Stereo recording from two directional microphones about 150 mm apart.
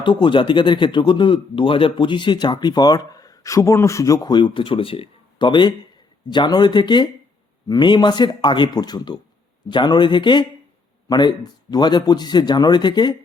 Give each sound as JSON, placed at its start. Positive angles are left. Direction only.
{"t": 0.0, "sound": "speech", "side_deg": 35}